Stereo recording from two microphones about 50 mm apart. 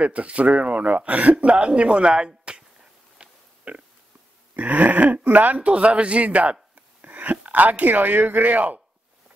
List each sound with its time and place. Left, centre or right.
0.0 s speech: right